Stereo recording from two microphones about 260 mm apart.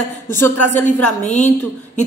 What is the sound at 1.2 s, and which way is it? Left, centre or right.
Speech, left.